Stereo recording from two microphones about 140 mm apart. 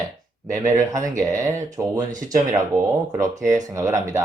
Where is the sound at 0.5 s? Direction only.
20° right (ahead or behind).